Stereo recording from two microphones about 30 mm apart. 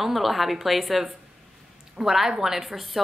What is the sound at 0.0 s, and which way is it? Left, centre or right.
Speech, centre.